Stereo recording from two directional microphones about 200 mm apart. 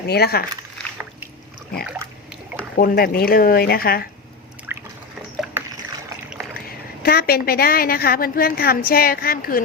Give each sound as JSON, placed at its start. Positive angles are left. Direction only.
{"t": 0.1, "sound": "a woman's voice", "side_deg": 50}
{"t": 2.7, "sound": "a woman's voice", "side_deg": 50}
{"t": 4.7, "sound": "drip", "side_deg": -10}
{"t": 6.7, "sound": "a woman's voice", "side_deg": 50}